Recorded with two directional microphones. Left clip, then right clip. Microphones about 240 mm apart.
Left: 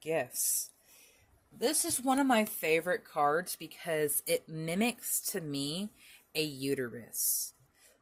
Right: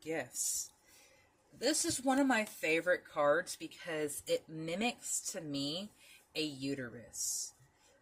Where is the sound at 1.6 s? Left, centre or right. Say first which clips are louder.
Left 2 dB; left.